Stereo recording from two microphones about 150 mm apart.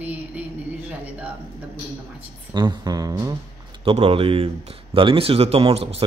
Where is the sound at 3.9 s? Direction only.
40° right (ahead or behind).